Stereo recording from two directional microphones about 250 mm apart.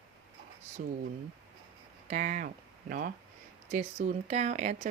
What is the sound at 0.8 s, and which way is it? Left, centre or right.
Speech, right.